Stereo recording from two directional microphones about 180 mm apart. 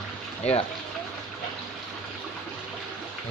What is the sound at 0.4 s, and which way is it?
Speech, 35° left (ahead or behind).